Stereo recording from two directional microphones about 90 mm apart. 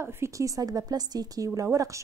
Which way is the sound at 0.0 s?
30° right (ahead or behind).